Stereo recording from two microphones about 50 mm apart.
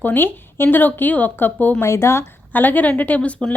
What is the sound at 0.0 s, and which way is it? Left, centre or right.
Speech, left.